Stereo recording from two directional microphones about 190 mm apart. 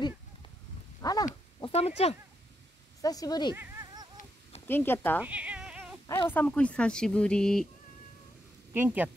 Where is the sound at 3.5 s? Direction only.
20° right (ahead or behind).